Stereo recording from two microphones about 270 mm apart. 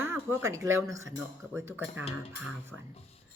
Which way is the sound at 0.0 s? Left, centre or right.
Centre.